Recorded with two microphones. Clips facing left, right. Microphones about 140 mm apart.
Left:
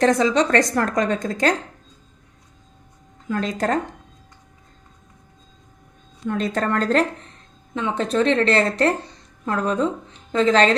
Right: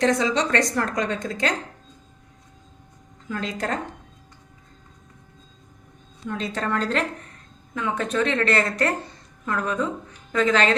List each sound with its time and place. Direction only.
0.0 s a woman's voice: 50° left (ahead or behind)
3.2 s a woman's voice: 45° left (ahead or behind)
6.2 s a woman's voice: 50° left (ahead or behind)
7.7 s a woman's voice: 25° left (ahead or behind)